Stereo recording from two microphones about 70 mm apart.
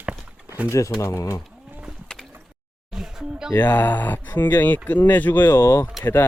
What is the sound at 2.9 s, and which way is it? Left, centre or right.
Music, centre.